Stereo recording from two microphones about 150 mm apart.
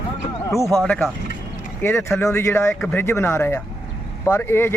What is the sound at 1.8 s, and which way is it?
Speech, 20° left (ahead or behind).